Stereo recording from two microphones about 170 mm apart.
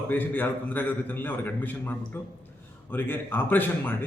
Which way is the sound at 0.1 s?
10° left (ahead or behind).